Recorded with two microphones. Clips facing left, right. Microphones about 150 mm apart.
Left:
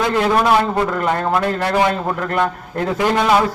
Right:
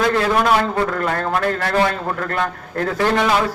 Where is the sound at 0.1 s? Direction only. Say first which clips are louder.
Left 2 dB; 15° left (ahead or behind).